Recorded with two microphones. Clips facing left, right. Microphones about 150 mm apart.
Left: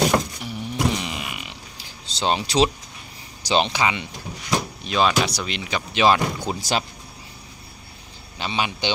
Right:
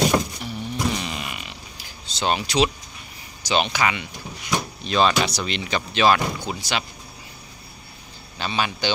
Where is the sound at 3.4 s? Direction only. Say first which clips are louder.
Left 1 dB; 30° left (ahead or behind).